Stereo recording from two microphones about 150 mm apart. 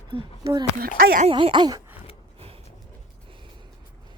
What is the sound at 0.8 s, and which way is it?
Speech, 85° right.